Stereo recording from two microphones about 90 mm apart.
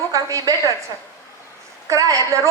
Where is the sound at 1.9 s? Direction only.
35° right (ahead or behind).